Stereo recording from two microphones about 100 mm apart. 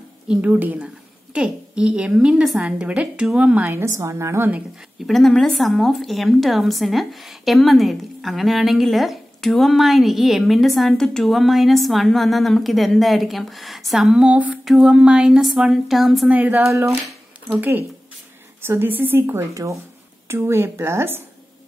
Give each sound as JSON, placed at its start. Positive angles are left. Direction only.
{"t": 0.3, "sound": "a woman's voice", "side_deg": -15}
{"t": 5.0, "sound": "speech", "side_deg": 5}
{"t": 16.3, "sound": "a woman's voice", "side_deg": -15}